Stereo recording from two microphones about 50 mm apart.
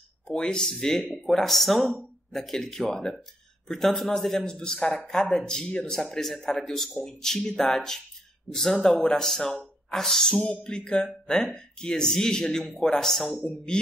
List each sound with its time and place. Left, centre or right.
0.3 s a man's voice: centre
10.3 s a man's voice: left; by 13.5 s centre